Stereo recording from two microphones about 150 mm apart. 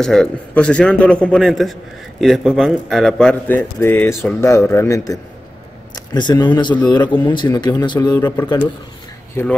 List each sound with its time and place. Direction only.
0.0 s a man's voice: 5° left (ahead or behind)